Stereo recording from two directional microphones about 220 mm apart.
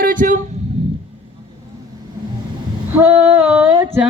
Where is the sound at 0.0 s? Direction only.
35° right (ahead or behind).